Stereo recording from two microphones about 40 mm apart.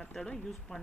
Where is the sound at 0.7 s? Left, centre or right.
Left.